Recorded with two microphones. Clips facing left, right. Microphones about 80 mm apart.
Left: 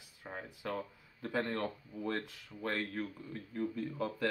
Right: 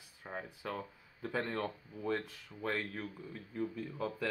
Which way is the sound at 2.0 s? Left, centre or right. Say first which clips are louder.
Right 2 dB; centre.